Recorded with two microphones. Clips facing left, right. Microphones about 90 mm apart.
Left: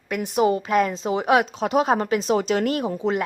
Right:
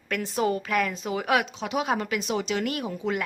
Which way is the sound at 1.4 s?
40° left (ahead or behind).